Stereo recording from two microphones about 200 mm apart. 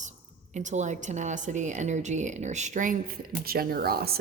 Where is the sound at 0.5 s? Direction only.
35° right (ahead or behind).